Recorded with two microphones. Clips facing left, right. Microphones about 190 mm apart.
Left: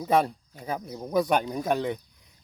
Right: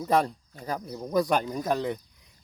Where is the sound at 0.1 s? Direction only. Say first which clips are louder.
Left 1 dB; 5° left (ahead or behind).